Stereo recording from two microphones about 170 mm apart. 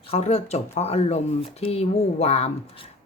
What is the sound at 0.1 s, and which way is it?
Speech, 40° left (ahead or behind).